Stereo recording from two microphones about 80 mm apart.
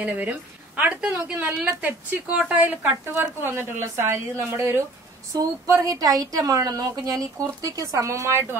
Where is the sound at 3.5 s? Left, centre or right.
Right.